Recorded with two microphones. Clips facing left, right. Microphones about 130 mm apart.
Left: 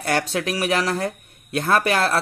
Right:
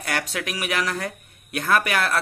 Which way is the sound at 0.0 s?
30° left (ahead or behind).